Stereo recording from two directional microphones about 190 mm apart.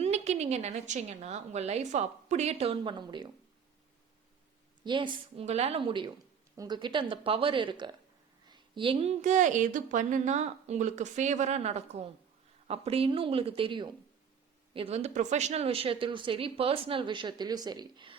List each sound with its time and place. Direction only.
0.0 s a woman's voice: 35° right (ahead or behind)
4.8 s a woman's voice: 25° right (ahead or behind)